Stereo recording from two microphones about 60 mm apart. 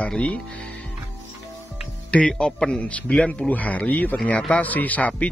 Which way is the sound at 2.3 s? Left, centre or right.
Centre.